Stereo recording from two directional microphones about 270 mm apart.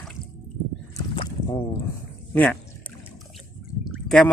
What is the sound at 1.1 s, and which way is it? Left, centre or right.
Boat, centre.